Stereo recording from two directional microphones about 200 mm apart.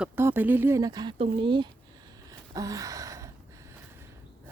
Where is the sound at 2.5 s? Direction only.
15° right (ahead or behind).